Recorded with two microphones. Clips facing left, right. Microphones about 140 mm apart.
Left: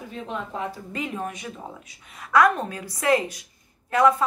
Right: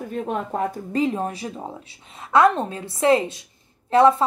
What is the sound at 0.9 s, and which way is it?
A woman's voice, 30° right (ahead or behind).